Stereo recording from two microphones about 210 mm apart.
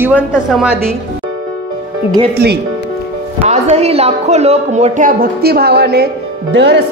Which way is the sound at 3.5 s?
30° right (ahead or behind).